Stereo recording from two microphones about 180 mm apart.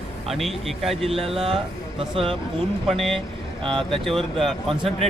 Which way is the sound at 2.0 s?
30° right (ahead or behind).